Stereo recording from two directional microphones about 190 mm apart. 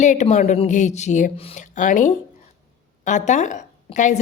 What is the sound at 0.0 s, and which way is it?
A woman's voice, 40° left (ahead or behind).